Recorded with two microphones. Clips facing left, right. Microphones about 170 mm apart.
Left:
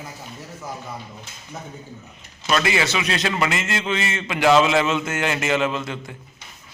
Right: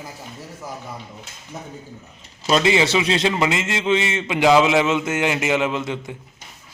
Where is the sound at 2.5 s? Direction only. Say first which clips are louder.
Right 4 dB; 25° right (ahead or behind).